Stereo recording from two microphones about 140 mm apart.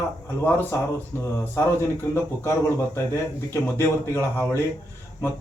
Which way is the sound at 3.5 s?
20° left (ahead or behind).